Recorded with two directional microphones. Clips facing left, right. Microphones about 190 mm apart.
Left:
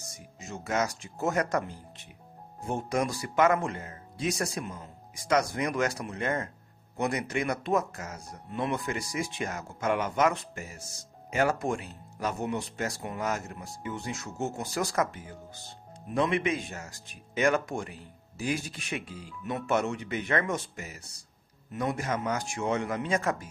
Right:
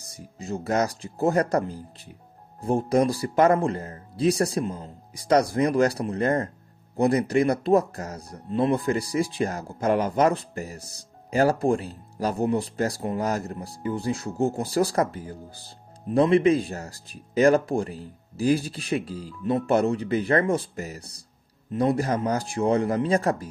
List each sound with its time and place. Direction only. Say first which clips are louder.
0.0 s speech: right 6 dB; 35° right (ahead or behind)